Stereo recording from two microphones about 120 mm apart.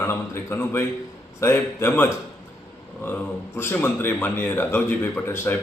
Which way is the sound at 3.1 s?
15° left (ahead or behind).